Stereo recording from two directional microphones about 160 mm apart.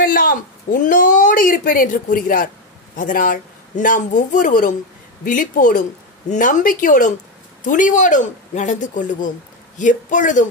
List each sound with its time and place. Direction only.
0.0 s speech: 65° left (ahead or behind)